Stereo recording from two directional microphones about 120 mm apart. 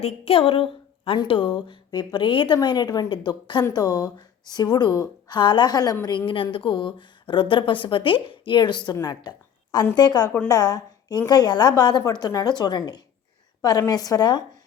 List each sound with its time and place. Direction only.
0.0 s speech: 55° left (ahead or behind); by 14.4 s 35° left (ahead or behind)